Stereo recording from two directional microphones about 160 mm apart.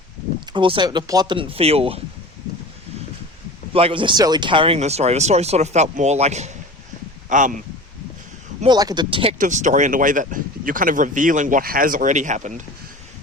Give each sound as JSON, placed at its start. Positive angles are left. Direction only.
{"t": 0.5, "sound": "speech", "side_deg": -30}
{"t": 3.7, "sound": "speech", "side_deg": -35}
{"t": 8.6, "sound": "speech", "side_deg": -25}
{"t": 9.4, "sound": "speech", "side_deg": -50}